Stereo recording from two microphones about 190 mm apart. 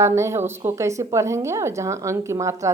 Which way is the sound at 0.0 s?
15° right (ahead or behind).